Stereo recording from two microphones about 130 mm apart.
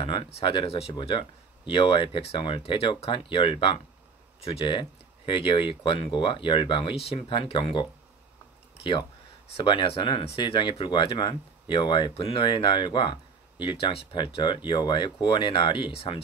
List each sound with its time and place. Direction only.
0.0 s speech: 45° left (ahead or behind)
9.5 s speech: 40° left (ahead or behind)